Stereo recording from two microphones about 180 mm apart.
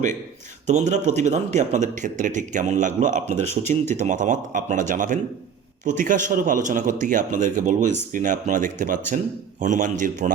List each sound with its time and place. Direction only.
0.7 s a man's voice: 40° right (ahead or behind)